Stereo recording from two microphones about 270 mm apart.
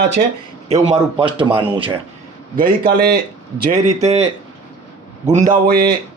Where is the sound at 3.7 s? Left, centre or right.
Right.